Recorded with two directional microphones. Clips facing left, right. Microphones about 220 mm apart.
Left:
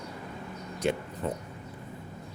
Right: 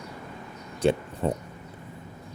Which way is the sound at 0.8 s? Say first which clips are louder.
Right 6 dB; 30° right (ahead or behind).